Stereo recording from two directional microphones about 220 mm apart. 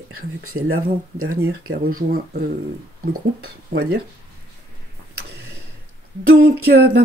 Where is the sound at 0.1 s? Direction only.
75° right (ahead or behind).